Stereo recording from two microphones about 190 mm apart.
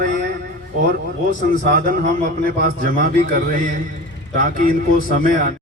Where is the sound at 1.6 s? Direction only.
40° right (ahead or behind).